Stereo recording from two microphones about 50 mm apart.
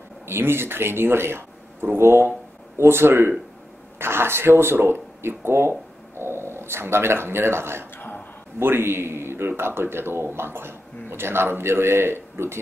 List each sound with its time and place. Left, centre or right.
0.3 s speech: right